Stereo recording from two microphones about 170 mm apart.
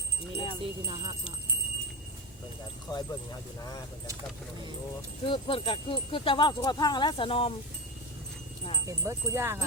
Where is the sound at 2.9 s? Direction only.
25° left (ahead or behind).